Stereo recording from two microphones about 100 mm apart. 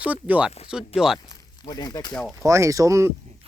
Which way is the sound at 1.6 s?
45° left (ahead or behind).